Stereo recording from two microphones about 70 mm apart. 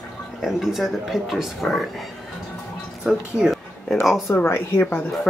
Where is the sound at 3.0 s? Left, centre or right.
Centre.